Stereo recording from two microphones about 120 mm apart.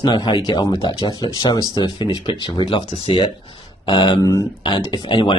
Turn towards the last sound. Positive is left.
turn(degrees=40)  # may be behind; listen again after turning